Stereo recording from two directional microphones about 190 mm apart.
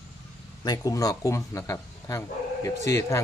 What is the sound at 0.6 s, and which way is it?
Speech, 20° left (ahead or behind).